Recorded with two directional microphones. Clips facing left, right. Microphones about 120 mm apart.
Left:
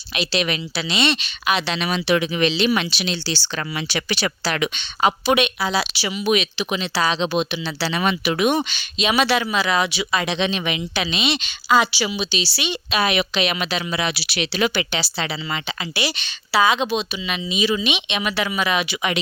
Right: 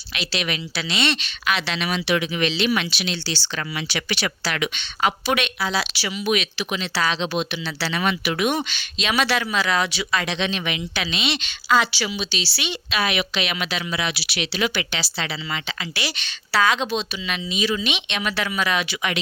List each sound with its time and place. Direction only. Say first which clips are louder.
0.1 s a woman's voice: left 4 dB; 20° left (ahead or behind)
1.7 s a woman's voice: left 2 dB; 30° left (ahead or behind)
13.0 s speech: left 3 dB; 25° left (ahead or behind)
15.2 s a woman's voice: left 2 dB; 20° left (ahead or behind)